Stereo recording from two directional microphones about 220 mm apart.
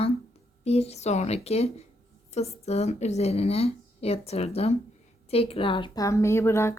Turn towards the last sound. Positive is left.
turn(degrees=10)  # may be behind; listen again after turning